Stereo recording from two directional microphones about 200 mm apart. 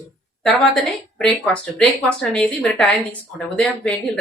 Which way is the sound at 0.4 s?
5° left (ahead or behind).